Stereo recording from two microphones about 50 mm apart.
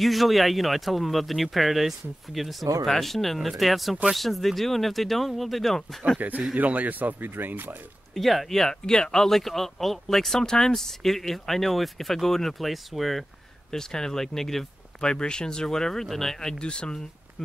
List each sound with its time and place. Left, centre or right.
0.0 s speech: centre
6.1 s speech: right
8.1 s speech: centre
13.7 s speech: centre